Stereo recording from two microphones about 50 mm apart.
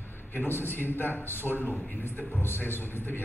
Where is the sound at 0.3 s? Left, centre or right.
Left.